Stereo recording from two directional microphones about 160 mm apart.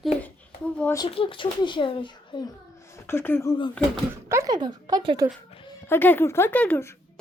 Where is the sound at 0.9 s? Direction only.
35° left (ahead or behind).